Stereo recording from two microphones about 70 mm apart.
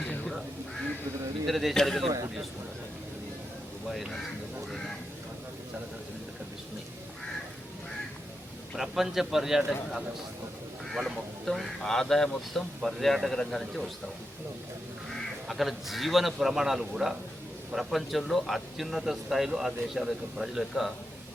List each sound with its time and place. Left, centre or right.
1.5 s a man's voice: centre
8.7 s a man's voice: centre
10.8 s a man's voice: centre
15.1 s a man's voice: centre